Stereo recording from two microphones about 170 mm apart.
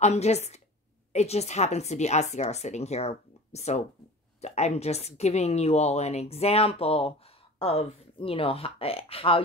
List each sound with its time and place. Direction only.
0.0 s a woman's voice: 40° left (ahead or behind)